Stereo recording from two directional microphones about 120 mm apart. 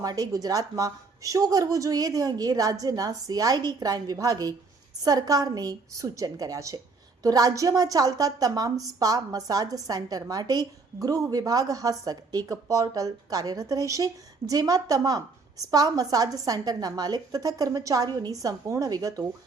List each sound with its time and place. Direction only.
0.0 s a woman's voice: 30° right (ahead or behind)